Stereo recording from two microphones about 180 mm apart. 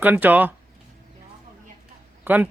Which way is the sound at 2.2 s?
10° right (ahead or behind).